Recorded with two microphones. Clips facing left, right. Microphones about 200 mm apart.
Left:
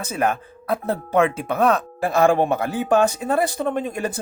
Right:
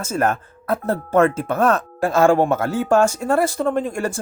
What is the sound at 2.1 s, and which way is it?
A man's voice, 15° left (ahead or behind).